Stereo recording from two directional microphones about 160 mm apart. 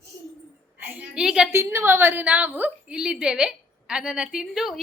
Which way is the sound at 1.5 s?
15° right (ahead or behind).